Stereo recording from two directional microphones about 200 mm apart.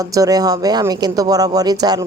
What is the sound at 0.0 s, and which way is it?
Speech, 15° right (ahead or behind).